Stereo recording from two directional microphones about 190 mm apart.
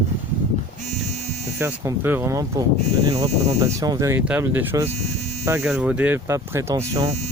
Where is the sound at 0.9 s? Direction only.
35° right (ahead or behind).